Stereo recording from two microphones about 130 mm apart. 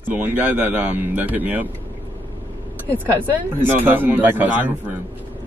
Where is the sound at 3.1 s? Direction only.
15° right (ahead or behind).